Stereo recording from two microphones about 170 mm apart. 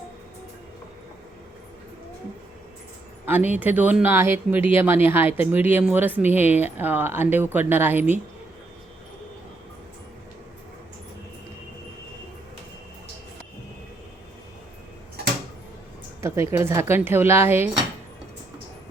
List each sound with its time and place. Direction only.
3.2 s speech: 10° right (ahead or behind)
16.2 s speech: 15° right (ahead or behind)